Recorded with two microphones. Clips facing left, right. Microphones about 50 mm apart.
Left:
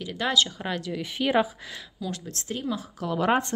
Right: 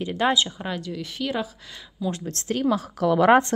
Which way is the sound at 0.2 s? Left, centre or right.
Right.